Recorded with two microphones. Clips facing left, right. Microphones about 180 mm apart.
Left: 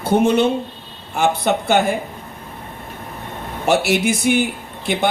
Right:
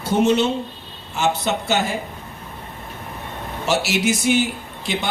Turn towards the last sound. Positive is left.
turn(degrees=55)  # may be behind; listen again after turning